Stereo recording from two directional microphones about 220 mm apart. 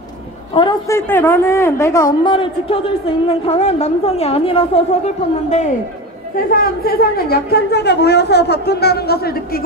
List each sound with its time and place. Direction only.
0.6 s a woman's voice: 15° left (ahead or behind)
6.3 s a woman's voice: 40° left (ahead or behind)